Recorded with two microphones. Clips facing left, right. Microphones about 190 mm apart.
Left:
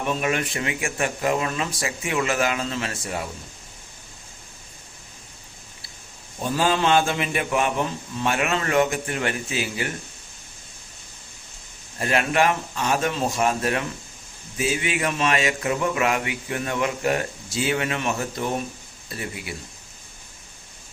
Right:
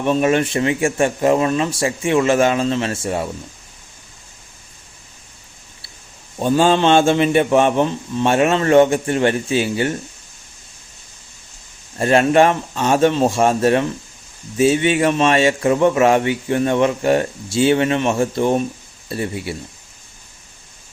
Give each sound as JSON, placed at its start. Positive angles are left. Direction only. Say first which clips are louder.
{"t": 0.1, "sound": "speech", "louder": "right 10 dB", "side_deg": -30}
{"t": 6.4, "sound": "speech", "louder": "right 7 dB", "side_deg": -30}
{"t": 11.9, "sound": "a man's voice", "louder": "right 9 dB", "side_deg": -30}